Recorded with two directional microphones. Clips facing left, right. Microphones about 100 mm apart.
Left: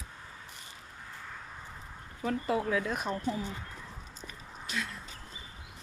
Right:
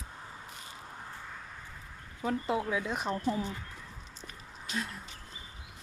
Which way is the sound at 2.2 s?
20° right (ahead or behind).